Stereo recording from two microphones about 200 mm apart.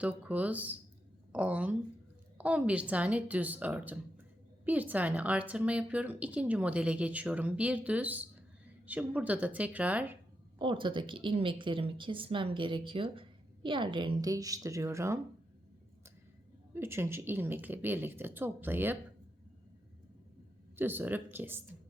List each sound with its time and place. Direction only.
0.0 s a woman's voice: 5° right (ahead or behind)
10.6 s a woman's voice: 25° right (ahead or behind)
16.7 s a woman's voice: 10° right (ahead or behind)
20.7 s a woman's voice: 10° right (ahead or behind)